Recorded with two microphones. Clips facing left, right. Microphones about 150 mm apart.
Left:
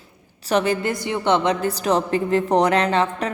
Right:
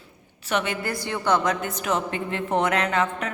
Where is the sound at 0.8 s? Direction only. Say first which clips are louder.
Left 4 dB; 20° left (ahead or behind).